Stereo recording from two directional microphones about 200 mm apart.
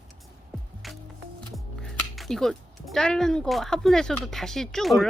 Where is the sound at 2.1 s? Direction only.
Centre (ahead or behind).